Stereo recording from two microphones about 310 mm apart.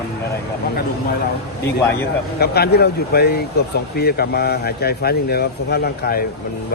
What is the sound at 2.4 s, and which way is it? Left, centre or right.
Speech, left.